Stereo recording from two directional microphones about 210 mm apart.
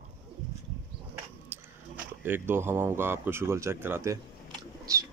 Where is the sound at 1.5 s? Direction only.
10° right (ahead or behind).